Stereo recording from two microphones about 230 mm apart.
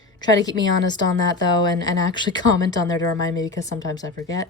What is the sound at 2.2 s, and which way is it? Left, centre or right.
Speech, centre.